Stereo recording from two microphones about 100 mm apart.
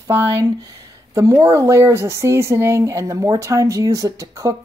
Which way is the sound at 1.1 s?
35° right (ahead or behind).